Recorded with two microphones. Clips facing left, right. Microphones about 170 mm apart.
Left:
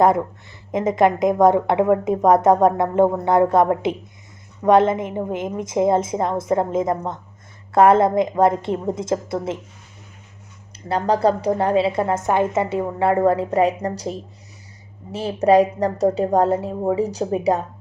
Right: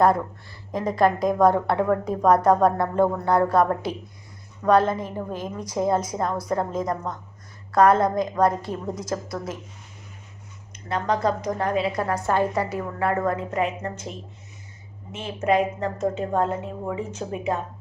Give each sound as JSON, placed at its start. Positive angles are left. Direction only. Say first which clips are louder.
{"t": 0.7, "sound": "a woman's voice", "louder": "left 4 dB", "side_deg": 20}
{"t": 10.8, "sound": "a woman's voice", "louder": "left 5 dB", "side_deg": 35}